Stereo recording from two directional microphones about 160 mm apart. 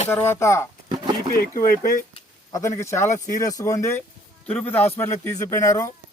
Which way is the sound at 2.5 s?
20° left (ahead or behind).